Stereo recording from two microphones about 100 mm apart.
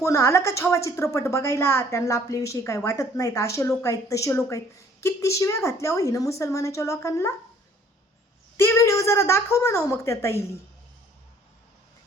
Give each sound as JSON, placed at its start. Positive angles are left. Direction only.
{"t": 0.0, "sound": "a woman's voice", "side_deg": 30}
{"t": 8.5, "sound": "a woman's voice", "side_deg": 30}